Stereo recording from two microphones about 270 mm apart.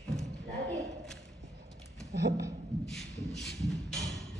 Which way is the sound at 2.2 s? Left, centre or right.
Right.